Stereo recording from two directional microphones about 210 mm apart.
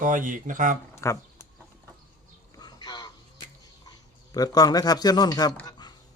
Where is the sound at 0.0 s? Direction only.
40° right (ahead or behind).